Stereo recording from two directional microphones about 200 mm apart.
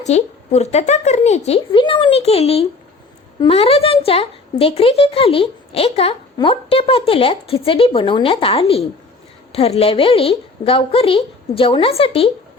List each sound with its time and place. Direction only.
0.0 s speech: 35° left (ahead or behind)